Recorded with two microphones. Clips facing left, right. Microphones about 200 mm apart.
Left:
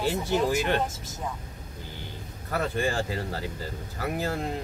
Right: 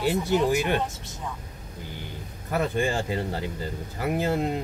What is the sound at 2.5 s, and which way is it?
Speech, 20° right (ahead or behind).